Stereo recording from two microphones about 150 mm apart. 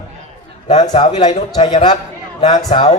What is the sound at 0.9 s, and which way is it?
Speech, 45° left (ahead or behind).